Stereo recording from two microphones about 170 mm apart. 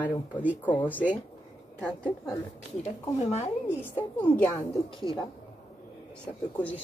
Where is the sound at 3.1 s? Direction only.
40° left (ahead or behind).